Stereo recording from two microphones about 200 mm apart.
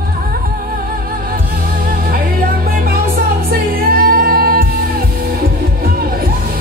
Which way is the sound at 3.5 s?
50° right (ahead or behind).